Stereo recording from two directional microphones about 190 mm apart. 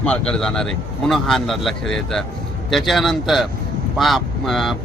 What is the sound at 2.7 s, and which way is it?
Speech, centre (ahead or behind).